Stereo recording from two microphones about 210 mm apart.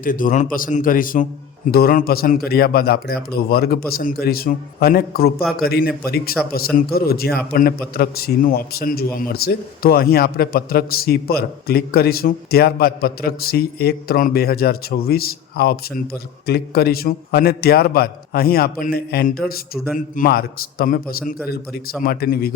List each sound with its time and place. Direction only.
0.0 s a man's voice: 40° left (ahead or behind)